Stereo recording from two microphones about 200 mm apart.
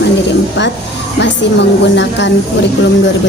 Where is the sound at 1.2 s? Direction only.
60° left (ahead or behind).